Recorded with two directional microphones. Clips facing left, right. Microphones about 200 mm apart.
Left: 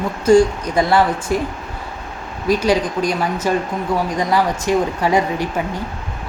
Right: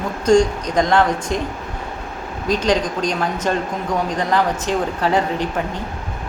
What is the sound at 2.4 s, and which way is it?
Speech, 10° left (ahead or behind).